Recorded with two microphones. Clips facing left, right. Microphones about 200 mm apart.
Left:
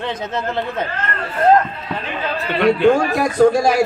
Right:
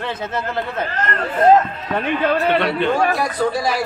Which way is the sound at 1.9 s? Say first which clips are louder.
Right 7 dB; 60° right (ahead or behind).